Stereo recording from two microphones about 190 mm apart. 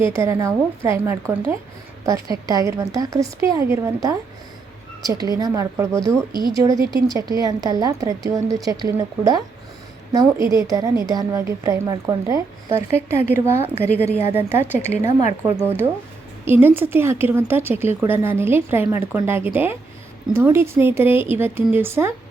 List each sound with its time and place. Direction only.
0.1 s a woman's voice: 15° right (ahead or behind)